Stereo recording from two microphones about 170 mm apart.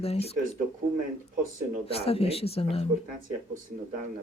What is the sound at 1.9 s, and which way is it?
Speech, 35° left (ahead or behind).